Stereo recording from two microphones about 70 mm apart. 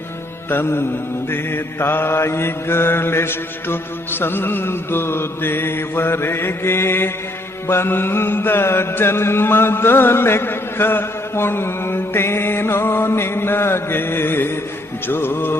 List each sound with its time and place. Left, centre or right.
0.5 s mantra: left